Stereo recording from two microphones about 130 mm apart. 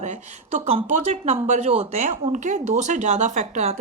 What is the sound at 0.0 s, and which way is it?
A man's voice, 65° right (ahead or behind).